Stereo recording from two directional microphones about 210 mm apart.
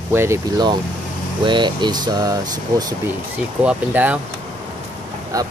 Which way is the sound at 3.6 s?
5° right (ahead or behind).